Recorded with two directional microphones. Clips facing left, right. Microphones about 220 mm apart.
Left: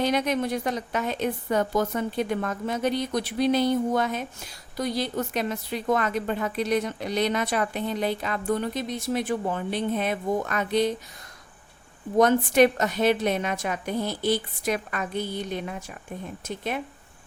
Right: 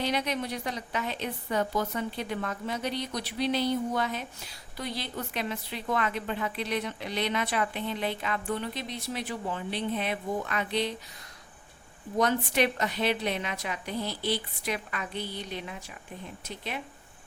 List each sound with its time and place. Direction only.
0.0 s a woman's voice: 45° left (ahead or behind)
12.1 s a woman's voice: 45° left (ahead or behind)